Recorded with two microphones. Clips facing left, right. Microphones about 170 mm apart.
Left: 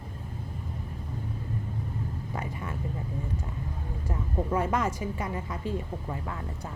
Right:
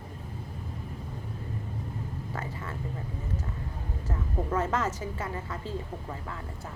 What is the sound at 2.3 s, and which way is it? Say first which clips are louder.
Vehicle: left 2 dB; 15° left (ahead or behind).